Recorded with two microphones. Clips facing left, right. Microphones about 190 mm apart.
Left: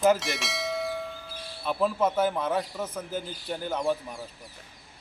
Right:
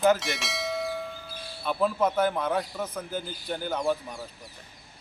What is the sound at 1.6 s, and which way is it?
A man's voice, centre (ahead or behind).